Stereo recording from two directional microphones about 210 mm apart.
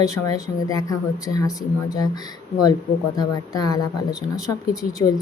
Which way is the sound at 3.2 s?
20° left (ahead or behind).